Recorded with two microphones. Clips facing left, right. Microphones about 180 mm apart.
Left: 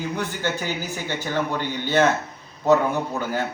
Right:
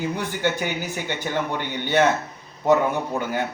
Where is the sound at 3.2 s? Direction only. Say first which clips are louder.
Even; 20° right (ahead or behind).